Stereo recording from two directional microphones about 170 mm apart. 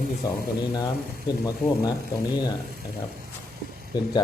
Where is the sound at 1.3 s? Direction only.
25° left (ahead or behind).